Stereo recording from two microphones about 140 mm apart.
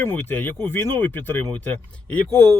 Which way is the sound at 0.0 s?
15° left (ahead or behind).